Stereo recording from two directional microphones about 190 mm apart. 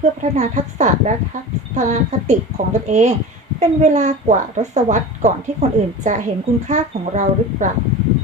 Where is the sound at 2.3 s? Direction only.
40° right (ahead or behind).